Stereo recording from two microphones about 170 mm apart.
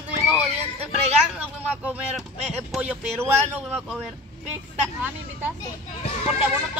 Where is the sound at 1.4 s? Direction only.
10° right (ahead or behind).